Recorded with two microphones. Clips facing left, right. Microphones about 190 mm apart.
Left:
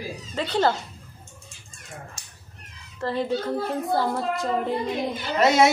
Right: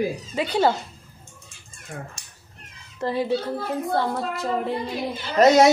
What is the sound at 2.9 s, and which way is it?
Speech, 15° right (ahead or behind).